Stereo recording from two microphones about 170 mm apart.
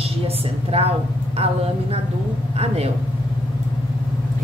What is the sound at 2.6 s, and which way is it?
Speech, 40° right (ahead or behind).